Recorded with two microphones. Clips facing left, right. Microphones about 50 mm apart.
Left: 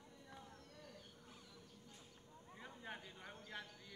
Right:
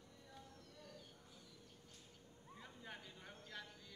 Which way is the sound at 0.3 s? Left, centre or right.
Left.